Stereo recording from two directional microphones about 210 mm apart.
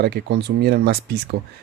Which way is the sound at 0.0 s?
50° right (ahead or behind).